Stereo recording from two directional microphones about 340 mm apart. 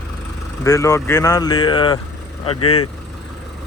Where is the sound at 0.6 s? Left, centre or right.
Centre.